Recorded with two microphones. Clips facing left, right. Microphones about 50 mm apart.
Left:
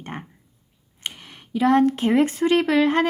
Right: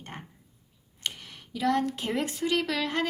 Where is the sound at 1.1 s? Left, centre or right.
Left.